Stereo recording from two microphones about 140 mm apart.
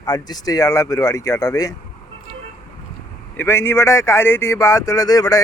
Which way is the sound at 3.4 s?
15° left (ahead or behind).